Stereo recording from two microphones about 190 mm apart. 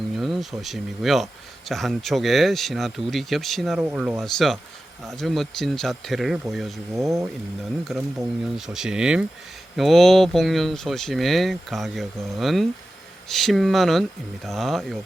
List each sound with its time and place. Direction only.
0.2 s speech: centre (ahead or behind)
6.9 s speech: 15° right (ahead or behind)
7.9 s speech: 5° right (ahead or behind)